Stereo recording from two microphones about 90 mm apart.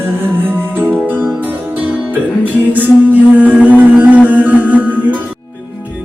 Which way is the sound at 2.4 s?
20° right (ahead or behind).